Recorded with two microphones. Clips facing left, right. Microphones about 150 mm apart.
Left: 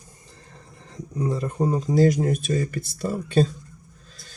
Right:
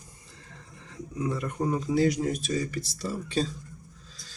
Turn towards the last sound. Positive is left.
turn(degrees=50)  # may be behind; listen again after turning